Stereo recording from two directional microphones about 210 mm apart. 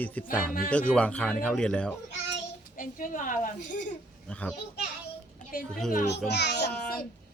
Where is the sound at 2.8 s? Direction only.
40° left (ahead or behind).